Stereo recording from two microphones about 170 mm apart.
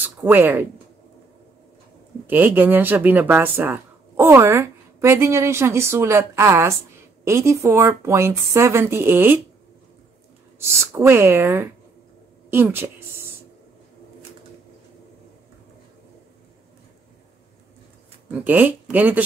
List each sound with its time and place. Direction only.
0.0 s speech: 10° right (ahead or behind)
2.2 s speech: 10° right (ahead or behind)
10.6 s a woman's voice: 15° right (ahead or behind)
18.4 s speech: 10° right (ahead or behind)